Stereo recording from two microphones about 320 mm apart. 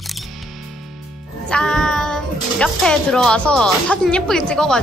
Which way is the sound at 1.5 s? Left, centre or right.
Centre.